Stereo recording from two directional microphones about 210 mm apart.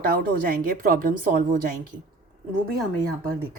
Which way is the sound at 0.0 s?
40° right (ahead or behind).